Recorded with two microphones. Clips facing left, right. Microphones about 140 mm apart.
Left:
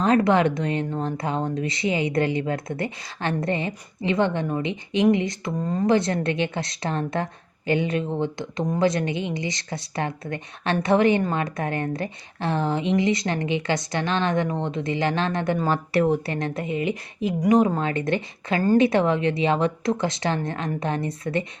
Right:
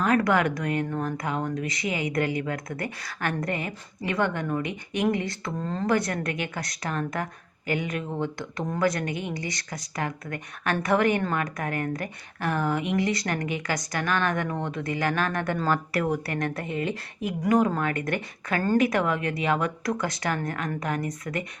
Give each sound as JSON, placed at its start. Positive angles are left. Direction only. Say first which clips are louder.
{"t": 0.0, "sound": "speech", "louder": "left 4 dB", "side_deg": 25}